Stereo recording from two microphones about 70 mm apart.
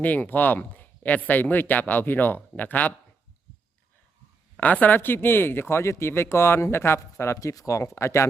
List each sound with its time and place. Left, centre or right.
0.0 s speech: left
4.6 s speech: left
7.3 s speech: left